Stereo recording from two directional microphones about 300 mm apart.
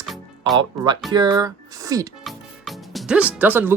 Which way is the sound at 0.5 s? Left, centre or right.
Centre.